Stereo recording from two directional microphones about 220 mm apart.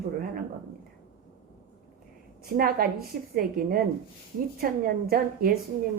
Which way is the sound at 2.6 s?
40° right (ahead or behind).